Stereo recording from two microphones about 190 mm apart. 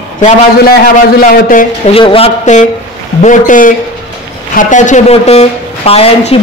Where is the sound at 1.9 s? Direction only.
30° left (ahead or behind).